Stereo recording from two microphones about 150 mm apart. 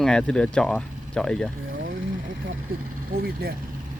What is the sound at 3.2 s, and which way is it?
Speech, 90° right.